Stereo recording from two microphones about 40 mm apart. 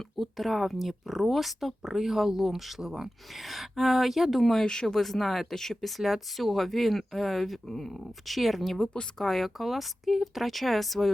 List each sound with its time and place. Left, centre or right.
0.2 s speech: centre
4.6 s speech: centre
5.0 s speech: centre